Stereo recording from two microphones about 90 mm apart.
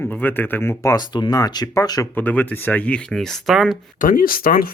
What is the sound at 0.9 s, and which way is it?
Speech, 50° left (ahead or behind).